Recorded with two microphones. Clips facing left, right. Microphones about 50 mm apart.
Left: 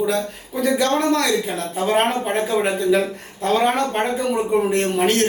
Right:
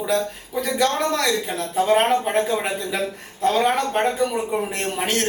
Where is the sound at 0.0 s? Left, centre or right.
Centre.